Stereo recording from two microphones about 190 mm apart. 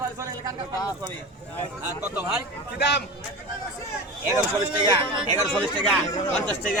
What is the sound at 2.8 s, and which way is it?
Speech, 65° left (ahead or behind).